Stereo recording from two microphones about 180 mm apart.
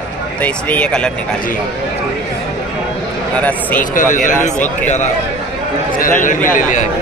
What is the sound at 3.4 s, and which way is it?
Speech, 10° left (ahead or behind).